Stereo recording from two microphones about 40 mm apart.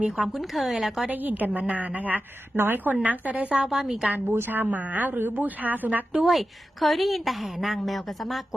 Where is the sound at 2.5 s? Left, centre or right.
Right.